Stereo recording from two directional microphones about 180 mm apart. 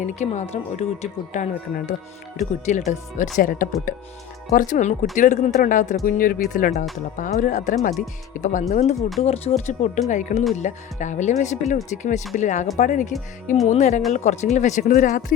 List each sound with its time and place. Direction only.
0.0 s speech: 40° left (ahead or behind)
9.0 s speech: centre (ahead or behind)
9.2 s speech: 35° left (ahead or behind)